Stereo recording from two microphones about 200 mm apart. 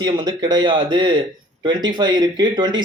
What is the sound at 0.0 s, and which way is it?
Speech, 20° right (ahead or behind).